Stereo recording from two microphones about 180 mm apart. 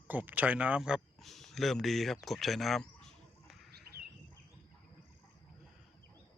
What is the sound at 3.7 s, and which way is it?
Bird, 60° right (ahead or behind).